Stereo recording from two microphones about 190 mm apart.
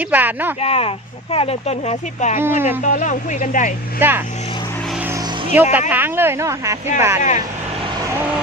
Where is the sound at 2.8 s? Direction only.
40° left (ahead or behind).